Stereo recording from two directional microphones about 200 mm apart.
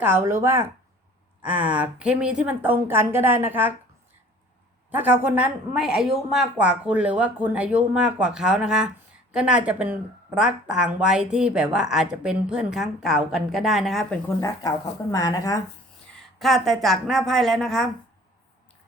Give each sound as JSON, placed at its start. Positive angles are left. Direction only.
{"t": 0.0, "sound": "a woman's voice", "side_deg": -10}
{"t": 4.9, "sound": "speech", "side_deg": -10}
{"t": 15.1, "sound": "speech", "side_deg": 15}
{"t": 16.4, "sound": "speech", "side_deg": 0}